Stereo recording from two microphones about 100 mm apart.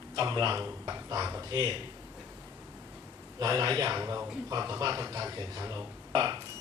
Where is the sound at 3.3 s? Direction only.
35° right (ahead or behind).